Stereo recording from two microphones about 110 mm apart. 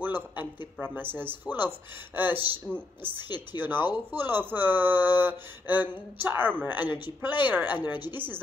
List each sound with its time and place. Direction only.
0.0 s speech: 15° right (ahead or behind)
3.2 s speech: 40° left (ahead or behind)
3.5 s speech: 20° right (ahead or behind)
7.7 s speech: 45° left (ahead or behind)
8.0 s speech: 20° right (ahead or behind)